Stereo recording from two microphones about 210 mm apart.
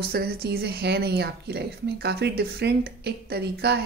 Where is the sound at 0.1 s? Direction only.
50° right (ahead or behind).